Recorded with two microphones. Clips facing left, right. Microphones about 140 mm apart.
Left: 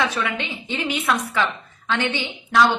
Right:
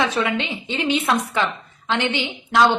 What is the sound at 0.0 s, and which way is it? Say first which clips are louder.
A woman's voice: right 3 dB; 20° right (ahead or behind).